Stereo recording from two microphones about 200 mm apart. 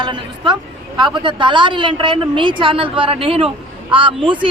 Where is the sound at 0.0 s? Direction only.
25° right (ahead or behind).